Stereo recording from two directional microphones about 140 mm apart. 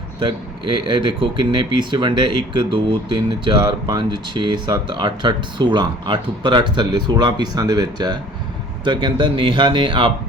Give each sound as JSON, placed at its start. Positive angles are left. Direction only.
{"t": 0.2, "sound": "speech", "side_deg": -35}